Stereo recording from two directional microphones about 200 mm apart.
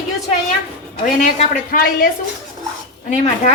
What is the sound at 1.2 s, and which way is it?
Speech, 40° left (ahead or behind).